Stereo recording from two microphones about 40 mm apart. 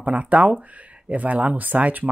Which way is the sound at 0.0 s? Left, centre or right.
Right.